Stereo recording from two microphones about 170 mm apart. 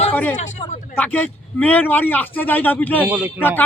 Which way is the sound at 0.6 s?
30° left (ahead or behind).